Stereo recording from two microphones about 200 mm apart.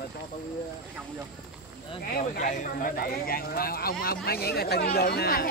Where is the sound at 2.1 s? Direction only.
40° left (ahead or behind).